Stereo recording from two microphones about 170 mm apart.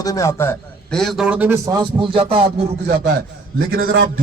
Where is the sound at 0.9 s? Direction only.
Centre (ahead or behind); by 2.5 s 30° right (ahead or behind).